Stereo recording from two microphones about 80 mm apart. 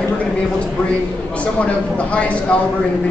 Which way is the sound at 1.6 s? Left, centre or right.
Centre.